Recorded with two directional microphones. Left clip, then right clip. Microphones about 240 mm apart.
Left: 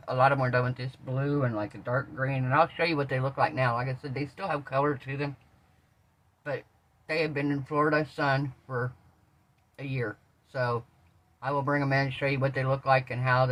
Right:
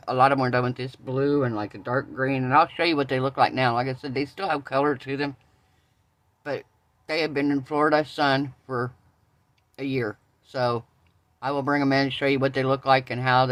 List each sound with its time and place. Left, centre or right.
0.0 s speech: right
7.1 s speech: right